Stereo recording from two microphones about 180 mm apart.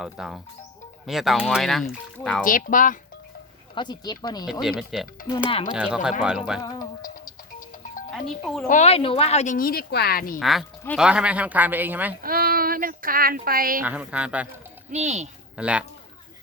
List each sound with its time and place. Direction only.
0.0 s speech: centre (ahead or behind)
2.4 s speech: 50° left (ahead or behind)
3.8 s speech: 25° left (ahead or behind)
4.8 s speech: centre (ahead or behind)
6.6 s speech: 20° left (ahead or behind)
8.1 s speech: centre (ahead or behind)
8.6 s speech: 40° left (ahead or behind)
10.4 s speech: centre (ahead or behind)
12.2 s speech: 55° right (ahead or behind)
13.8 s speech: 5° right (ahead or behind)
14.8 s speech: 40° right (ahead or behind)
15.5 s speech: 5° right (ahead or behind)